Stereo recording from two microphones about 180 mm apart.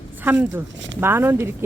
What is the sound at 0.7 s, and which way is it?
Speech, 90° right.